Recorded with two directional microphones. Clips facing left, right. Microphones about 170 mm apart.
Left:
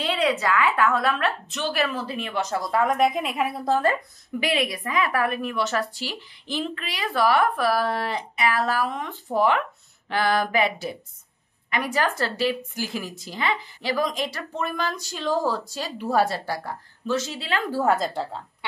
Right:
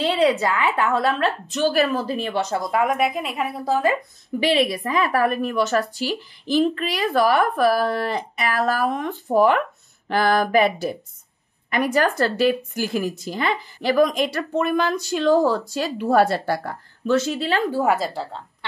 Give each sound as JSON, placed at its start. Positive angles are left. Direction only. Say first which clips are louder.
{"t": 0.0, "sound": "a woman's voice", "louder": "right 5 dB", "side_deg": -30}
{"t": 4.4, "sound": "a woman's voice", "louder": "right 5 dB", "side_deg": -30}
{"t": 17.6, "sound": "a woman's voice", "louder": "right 2 dB", "side_deg": -15}